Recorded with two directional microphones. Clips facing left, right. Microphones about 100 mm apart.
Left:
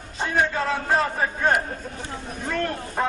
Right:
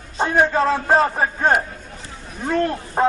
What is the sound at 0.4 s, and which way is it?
A man's voice, 40° right (ahead or behind).